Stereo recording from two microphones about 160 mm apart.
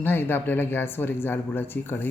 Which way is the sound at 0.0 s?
15° left (ahead or behind).